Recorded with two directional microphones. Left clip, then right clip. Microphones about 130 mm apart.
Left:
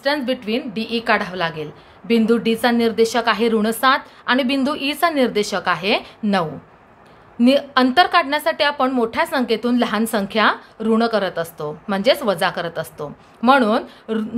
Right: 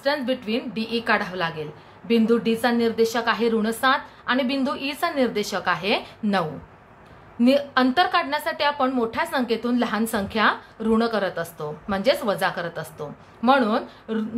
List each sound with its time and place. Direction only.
0.0 s a woman's voice: 40° left (ahead or behind)